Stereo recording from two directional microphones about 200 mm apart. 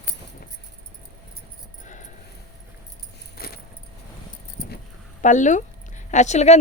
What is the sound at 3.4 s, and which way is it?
Keys jangling, 50° left (ahead or behind).